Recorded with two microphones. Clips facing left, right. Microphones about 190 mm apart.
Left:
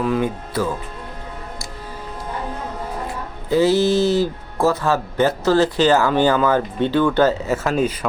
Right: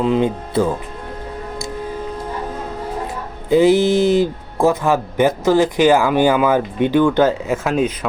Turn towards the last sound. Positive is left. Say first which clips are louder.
# right 2 dB
turn(degrees=5)  # may be behind; listen again after turning